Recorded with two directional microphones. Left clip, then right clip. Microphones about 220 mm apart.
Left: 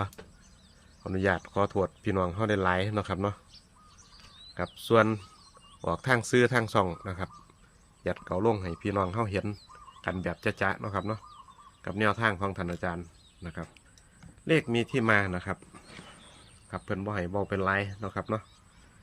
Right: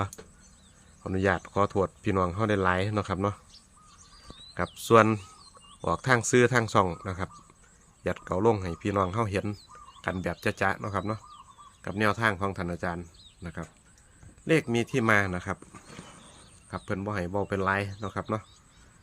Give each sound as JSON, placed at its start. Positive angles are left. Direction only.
{"t": 1.0, "sound": "speech", "side_deg": -15}
{"t": 4.5, "sound": "speech", "side_deg": -20}
{"t": 16.6, "sound": "speech", "side_deg": -5}